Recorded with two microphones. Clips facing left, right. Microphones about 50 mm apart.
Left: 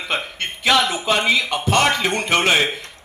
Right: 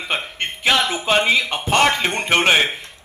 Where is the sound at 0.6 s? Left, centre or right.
Right.